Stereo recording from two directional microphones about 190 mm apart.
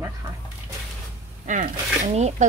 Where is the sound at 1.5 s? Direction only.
40° right (ahead or behind).